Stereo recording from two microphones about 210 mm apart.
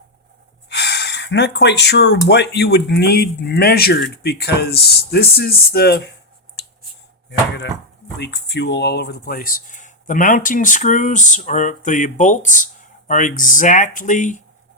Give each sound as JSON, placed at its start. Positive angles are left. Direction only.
{"t": 0.7, "sound": "speech", "side_deg": 55}
{"t": 6.6, "sound": "a sound", "side_deg": 55}
{"t": 7.3, "sound": "speech", "side_deg": 55}